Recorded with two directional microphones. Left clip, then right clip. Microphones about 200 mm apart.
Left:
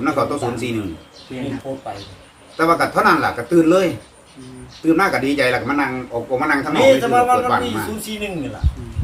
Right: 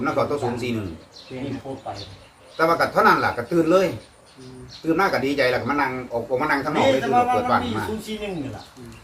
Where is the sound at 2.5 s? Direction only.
5° left (ahead or behind).